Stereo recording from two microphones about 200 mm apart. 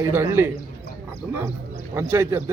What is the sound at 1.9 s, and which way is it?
Speech, 10° right (ahead or behind).